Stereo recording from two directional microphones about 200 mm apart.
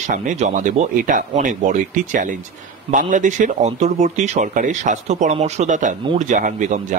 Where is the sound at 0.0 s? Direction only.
40° right (ahead or behind).